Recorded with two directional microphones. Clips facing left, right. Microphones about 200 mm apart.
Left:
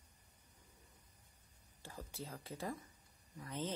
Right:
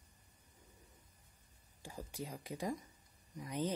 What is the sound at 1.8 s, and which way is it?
Speech, 15° right (ahead or behind).